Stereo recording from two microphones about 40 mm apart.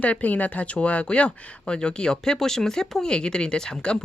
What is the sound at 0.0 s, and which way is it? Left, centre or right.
Speech, left.